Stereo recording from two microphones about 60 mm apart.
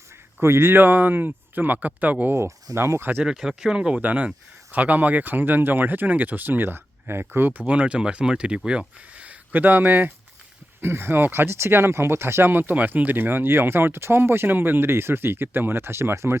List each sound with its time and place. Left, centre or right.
0.4 s speech: right
2.7 s speech: right
3.2 s speech: centre; by 7.6 s right
7.7 s speech: centre
9.1 s a sound: right
10.8 s speech: right